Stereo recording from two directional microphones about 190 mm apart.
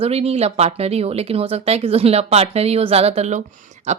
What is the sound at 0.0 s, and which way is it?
Speech, 30° right (ahead or behind).